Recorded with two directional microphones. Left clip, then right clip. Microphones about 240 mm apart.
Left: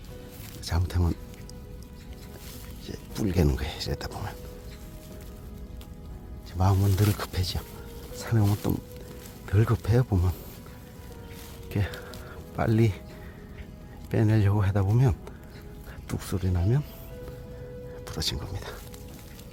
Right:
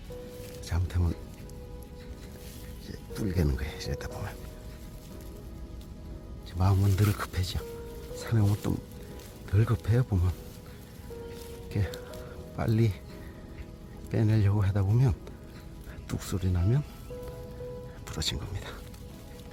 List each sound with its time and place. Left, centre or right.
0.6 s speech: centre
2.8 s speech: centre
6.6 s speech: centre
11.7 s music: centre
14.1 s speech: centre
18.0 s speech: centre